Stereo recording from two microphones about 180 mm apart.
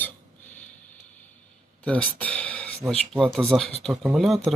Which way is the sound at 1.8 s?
5° left (ahead or behind).